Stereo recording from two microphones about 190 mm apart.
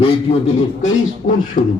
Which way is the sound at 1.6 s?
45° left (ahead or behind).